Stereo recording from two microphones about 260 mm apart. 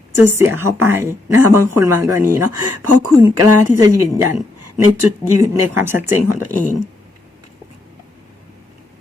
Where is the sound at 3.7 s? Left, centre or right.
Centre.